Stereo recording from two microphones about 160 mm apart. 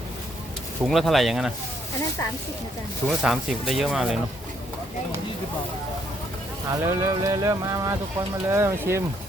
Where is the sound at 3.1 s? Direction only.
Centre (ahead or behind).